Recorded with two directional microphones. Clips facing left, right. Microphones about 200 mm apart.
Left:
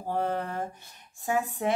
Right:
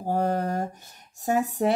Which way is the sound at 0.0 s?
45° right (ahead or behind).